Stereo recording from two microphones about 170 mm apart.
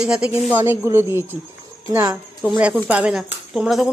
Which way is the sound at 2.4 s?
10° right (ahead or behind).